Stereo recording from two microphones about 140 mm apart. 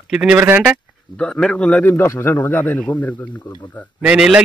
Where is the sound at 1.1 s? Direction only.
5° left (ahead or behind).